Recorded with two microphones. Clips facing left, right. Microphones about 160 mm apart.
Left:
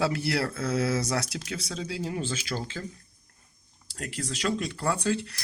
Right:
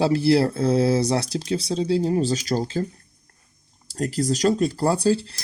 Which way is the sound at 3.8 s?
35° right (ahead or behind).